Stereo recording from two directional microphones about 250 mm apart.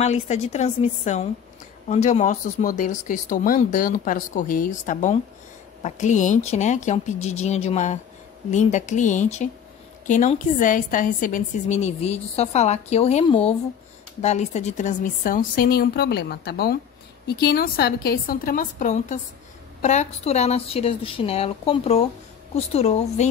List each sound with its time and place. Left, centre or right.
0.0 s a woman's voice: left